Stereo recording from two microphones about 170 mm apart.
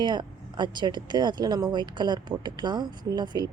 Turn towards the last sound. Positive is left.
turn(degrees=-25)  # may be behind; listen again after turning